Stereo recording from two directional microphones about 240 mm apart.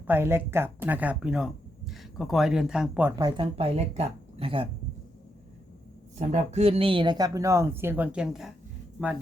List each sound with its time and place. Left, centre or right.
0.1 s speech: centre
3.2 s speech: centre
6.1 s speech: right; by 8.5 s centre